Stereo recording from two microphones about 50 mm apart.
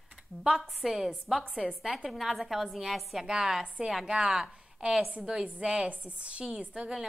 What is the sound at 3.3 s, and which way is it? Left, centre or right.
A woman's voice, centre.